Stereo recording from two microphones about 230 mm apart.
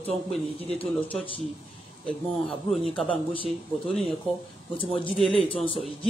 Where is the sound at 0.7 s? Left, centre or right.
Centre.